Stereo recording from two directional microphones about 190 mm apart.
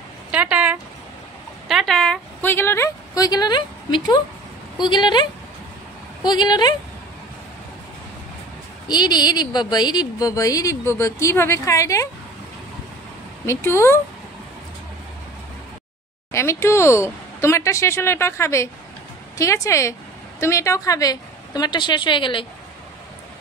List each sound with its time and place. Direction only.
0.3 s a sound: 5° right (ahead or behind); by 4.2 s 25° left (ahead or behind)
4.7 s a woman's voice: 25° left (ahead or behind)
8.8 s a woman's voice: 20° left (ahead or behind)
13.5 s a woman's voice: 15° left (ahead or behind)
16.3 s a woman's voice: 15° left (ahead or behind)